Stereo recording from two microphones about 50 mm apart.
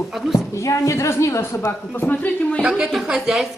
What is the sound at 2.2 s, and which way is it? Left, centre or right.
Speech, left.